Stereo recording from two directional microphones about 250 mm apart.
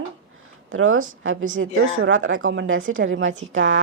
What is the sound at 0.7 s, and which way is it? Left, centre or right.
A woman's voice, right.